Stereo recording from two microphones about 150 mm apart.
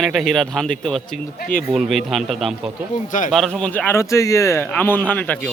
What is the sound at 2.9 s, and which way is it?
Speech, 60° left (ahead or behind).